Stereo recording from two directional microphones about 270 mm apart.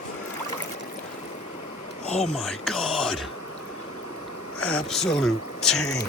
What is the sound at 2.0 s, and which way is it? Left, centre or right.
Speech, left.